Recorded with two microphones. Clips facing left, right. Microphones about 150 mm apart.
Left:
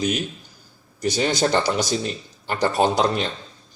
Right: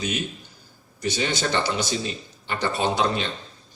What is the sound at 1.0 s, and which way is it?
Speech, 40° left (ahead or behind).